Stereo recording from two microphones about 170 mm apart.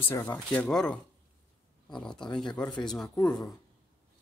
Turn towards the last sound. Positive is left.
turn(degrees=5)  # may be behind; listen again after turning